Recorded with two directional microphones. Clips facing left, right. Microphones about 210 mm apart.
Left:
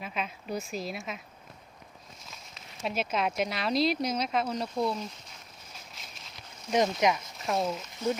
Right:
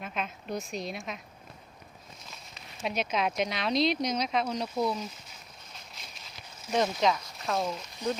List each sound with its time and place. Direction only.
0.0 s speech: centre (ahead or behind)
2.3 s speech: centre (ahead or behind)
5.7 s a sound: centre (ahead or behind)
6.7 s speech: 15° left (ahead or behind)
7.4 s speech: centre (ahead or behind)
8.0 s speech: 15° right (ahead or behind)